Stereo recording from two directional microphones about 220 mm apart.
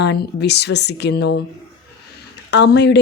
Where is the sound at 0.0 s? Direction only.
50° left (ahead or behind).